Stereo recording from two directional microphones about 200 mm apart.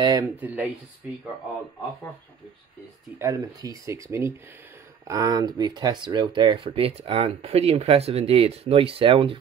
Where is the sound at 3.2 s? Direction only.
15° right (ahead or behind).